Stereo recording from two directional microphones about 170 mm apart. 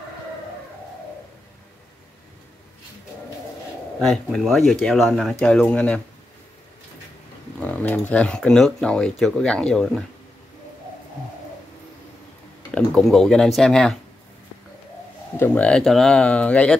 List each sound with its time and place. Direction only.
4.0 s speech: centre (ahead or behind)
7.6 s speech: 10° left (ahead or behind)
12.7 s speech: 5° left (ahead or behind)
15.3 s speech: 10° left (ahead or behind)